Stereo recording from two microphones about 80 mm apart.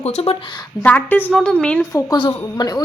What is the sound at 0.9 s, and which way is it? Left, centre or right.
Speech, left.